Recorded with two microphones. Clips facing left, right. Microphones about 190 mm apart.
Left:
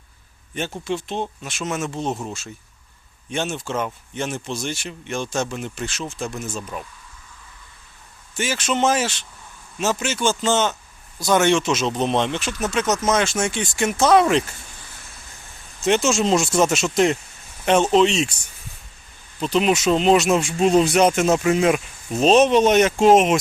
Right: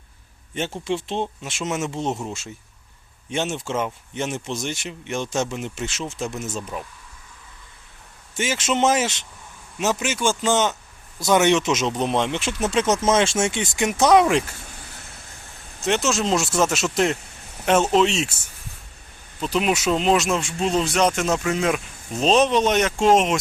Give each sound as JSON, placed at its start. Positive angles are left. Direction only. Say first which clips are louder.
{"t": 0.9, "sound": "speech", "louder": "right 1 dB", "side_deg": -25}
{"t": 8.4, "sound": "speech", "louder": "even", "side_deg": -20}
{"t": 12.4, "sound": "speech", "louder": "right 1 dB", "side_deg": -25}
{"t": 15.8, "sound": "speech", "louder": "left 3 dB", "side_deg": 0}
{"t": 19.4, "sound": "speech", "louder": "left 3 dB", "side_deg": -5}